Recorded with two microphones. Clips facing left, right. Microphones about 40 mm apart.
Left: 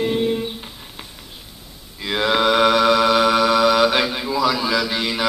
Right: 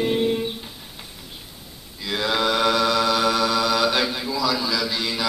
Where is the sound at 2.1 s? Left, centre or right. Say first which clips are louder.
Left 5 dB; left.